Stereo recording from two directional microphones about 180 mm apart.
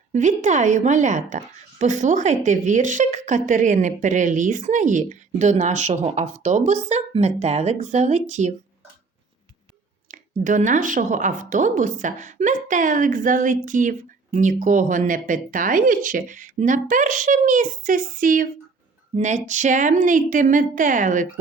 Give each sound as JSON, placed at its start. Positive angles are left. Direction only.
{"t": 0.1, "sound": "a woman's voice", "side_deg": -40}
{"t": 10.1, "sound": "speech", "side_deg": -45}